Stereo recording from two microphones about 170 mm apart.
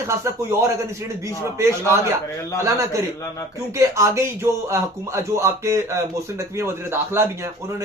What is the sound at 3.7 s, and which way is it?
A man's voice, 15° right (ahead or behind).